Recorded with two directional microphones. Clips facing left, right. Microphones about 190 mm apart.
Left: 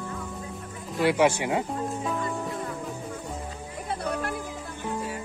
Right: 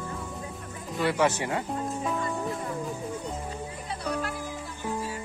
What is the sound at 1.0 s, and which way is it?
Speech, 10° left (ahead or behind).